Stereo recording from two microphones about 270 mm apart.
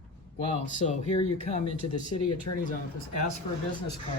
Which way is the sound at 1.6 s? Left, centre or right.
Left.